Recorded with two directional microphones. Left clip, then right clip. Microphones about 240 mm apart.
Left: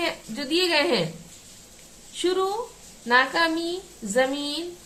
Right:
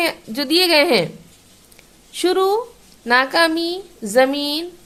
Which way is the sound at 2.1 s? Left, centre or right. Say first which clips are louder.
Right 8 dB; right.